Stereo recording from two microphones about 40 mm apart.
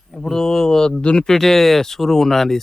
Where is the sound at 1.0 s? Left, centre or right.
Left.